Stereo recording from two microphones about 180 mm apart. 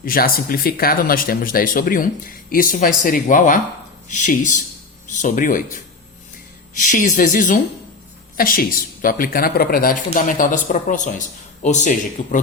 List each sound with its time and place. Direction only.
0.0 s speech: 55° left (ahead or behind)
6.8 s speech: 45° left (ahead or behind)